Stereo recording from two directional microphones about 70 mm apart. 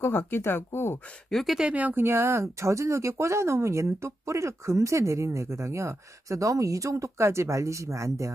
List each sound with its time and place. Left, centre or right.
0.3 s speech: left
1.3 s speech: centre
1.6 s speech: centre
2.0 s speech: right